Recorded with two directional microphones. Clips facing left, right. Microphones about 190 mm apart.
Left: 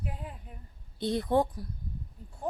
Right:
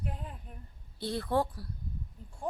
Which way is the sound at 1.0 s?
20° left (ahead or behind).